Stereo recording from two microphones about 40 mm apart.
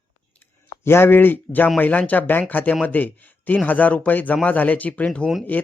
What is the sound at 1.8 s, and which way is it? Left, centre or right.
Speech, left.